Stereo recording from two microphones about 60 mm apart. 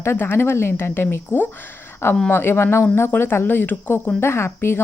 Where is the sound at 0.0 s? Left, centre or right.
Left.